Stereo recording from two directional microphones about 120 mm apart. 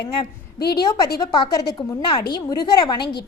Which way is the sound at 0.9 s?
35° left (ahead or behind).